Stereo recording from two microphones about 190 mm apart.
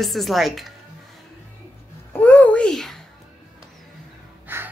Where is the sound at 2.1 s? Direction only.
10° left (ahead or behind).